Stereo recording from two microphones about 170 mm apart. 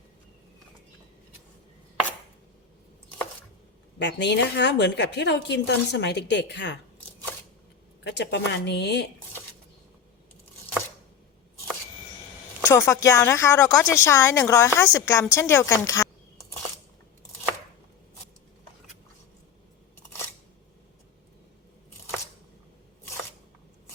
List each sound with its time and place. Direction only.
3.9 s a woman's voice: 90° left
8.0 s a woman's voice: 90° left
12.6 s speech: 15° left (ahead or behind)